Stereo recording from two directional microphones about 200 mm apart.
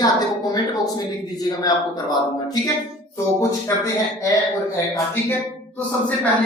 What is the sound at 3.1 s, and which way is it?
Speech, 15° left (ahead or behind).